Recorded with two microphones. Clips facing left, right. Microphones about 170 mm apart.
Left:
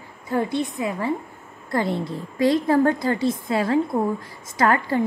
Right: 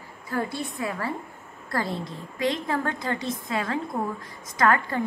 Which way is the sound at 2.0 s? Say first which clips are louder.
Left 6 dB; 35° left (ahead or behind).